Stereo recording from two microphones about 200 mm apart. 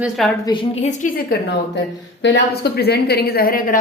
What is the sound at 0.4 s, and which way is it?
Speech, 25° left (ahead or behind).